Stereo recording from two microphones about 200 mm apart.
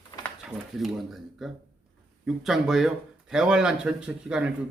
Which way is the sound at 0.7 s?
Centre (ahead or behind).